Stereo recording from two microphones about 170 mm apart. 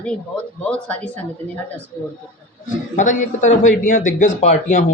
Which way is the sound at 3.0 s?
45° left (ahead or behind).